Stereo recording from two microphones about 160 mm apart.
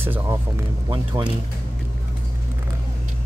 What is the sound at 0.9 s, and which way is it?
Speech, 30° right (ahead or behind).